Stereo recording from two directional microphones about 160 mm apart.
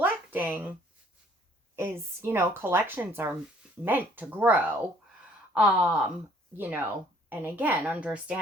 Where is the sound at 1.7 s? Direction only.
15° right (ahead or behind).